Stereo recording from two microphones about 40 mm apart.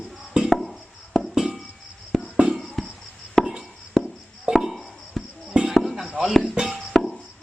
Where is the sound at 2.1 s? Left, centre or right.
Centre.